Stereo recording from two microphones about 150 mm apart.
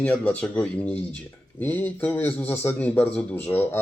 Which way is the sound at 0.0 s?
10° left (ahead or behind).